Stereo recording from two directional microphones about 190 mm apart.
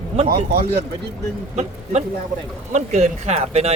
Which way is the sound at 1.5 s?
35° right (ahead or behind).